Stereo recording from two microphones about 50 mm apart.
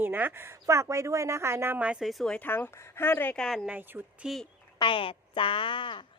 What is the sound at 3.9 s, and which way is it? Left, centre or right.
Speech, right.